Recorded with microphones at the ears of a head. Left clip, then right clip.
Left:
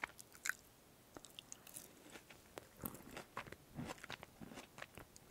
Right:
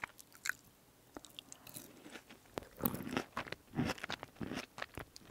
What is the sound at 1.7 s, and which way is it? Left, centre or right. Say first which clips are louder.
Biting: right 5 dB; right.